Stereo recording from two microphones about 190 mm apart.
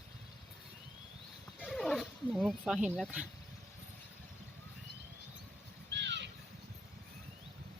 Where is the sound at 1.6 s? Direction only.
Centre (ahead or behind).